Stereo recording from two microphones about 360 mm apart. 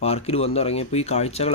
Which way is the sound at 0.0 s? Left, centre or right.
Centre.